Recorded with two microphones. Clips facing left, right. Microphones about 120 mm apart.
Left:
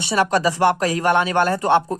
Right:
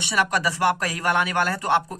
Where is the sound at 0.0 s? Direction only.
30° left (ahead or behind).